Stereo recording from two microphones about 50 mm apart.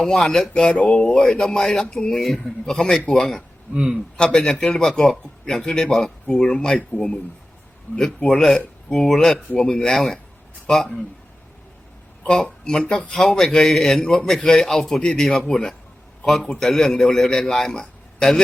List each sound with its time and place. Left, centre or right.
0.0 s a man's voice: centre
3.8 s a man's voice: centre
4.2 s a man's voice: centre
7.9 s a man's voice: left
8.4 s a man's voice: centre
10.7 s speech: centre
12.4 s a man's voice: centre